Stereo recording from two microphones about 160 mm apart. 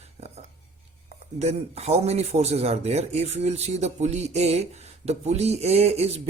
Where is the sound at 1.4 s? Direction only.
40° right (ahead or behind).